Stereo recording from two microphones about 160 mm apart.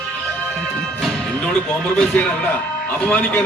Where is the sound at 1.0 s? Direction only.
5° left (ahead or behind).